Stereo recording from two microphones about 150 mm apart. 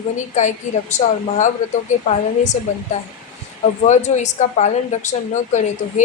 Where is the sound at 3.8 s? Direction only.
50° left (ahead or behind).